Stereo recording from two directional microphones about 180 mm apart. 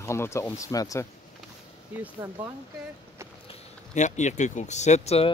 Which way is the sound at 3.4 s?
40° left (ahead or behind).